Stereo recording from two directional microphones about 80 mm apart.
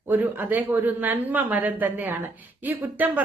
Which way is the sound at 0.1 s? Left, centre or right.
Right.